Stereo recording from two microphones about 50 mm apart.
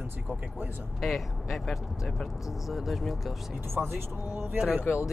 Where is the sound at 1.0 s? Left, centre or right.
Centre.